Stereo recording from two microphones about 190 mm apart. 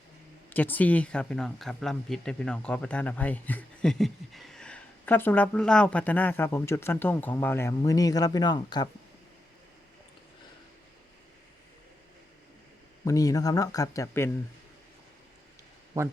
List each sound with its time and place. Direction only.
0.5 s speech: 10° left (ahead or behind)
13.1 s speech: 20° left (ahead or behind)